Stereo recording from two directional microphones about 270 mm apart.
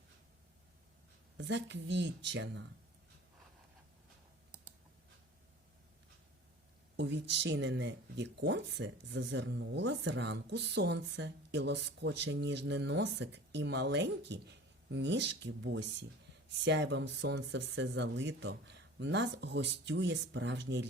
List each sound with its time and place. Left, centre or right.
1.4 s speech: right
6.9 s speech: right